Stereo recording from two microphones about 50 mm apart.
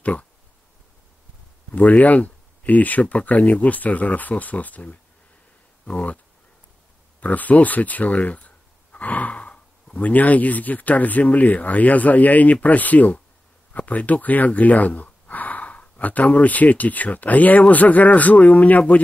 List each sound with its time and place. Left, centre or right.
0.0 s a sound: left
1.7 s speech: left
7.2 s speech: left